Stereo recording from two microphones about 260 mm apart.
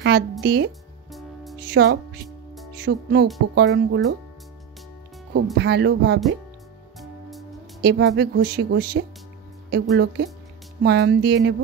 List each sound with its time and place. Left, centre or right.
0.0 s speech: right
1.1 s music: centre
1.7 s speech: right
2.2 s music: centre
2.8 s speech: right
5.3 s speech: right
7.0 s music: centre
7.8 s speech: right